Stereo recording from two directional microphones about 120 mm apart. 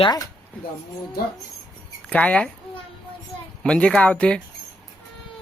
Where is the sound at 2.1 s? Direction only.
10° left (ahead or behind).